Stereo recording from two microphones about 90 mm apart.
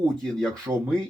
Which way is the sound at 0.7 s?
30° right (ahead or behind).